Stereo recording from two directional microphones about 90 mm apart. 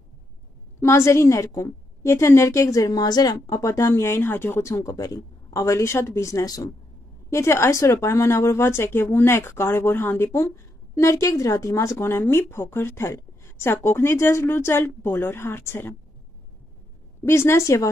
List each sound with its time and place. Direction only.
0.7 s a woman's voice: 30° left (ahead or behind)
17.2 s speech: 30° left (ahead or behind)